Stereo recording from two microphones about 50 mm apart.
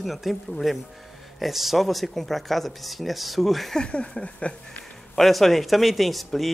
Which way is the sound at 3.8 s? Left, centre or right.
Centre.